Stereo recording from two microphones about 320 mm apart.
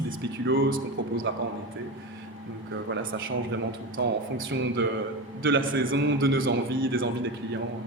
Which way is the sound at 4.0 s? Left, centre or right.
Right.